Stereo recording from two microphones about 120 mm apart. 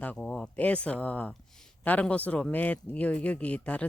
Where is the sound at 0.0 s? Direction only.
10° left (ahead or behind).